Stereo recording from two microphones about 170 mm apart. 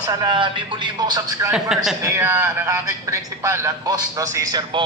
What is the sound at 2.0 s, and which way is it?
A man's voice, 20° right (ahead or behind).